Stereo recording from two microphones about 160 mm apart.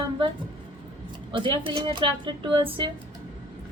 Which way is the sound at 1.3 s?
30° right (ahead or behind).